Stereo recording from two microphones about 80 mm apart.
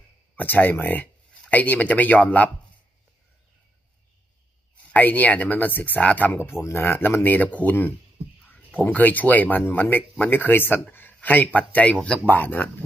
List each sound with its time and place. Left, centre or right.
0.4 s speech: left
4.9 s speech: left